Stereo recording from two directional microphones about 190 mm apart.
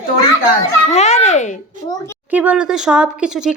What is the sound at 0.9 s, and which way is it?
Speech, 35° left (ahead or behind).